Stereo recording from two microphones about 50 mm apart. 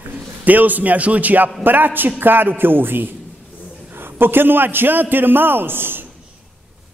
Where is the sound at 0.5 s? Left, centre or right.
Right.